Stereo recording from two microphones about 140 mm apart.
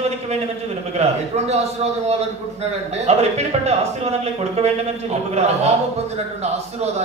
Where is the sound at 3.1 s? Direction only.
50° right (ahead or behind).